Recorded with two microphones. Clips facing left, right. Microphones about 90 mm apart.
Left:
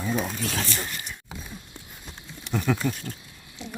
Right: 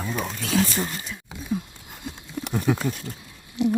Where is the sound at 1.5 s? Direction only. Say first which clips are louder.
Right 13 dB; 90° right.